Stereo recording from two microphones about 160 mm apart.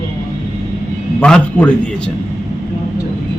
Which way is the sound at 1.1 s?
5° left (ahead or behind).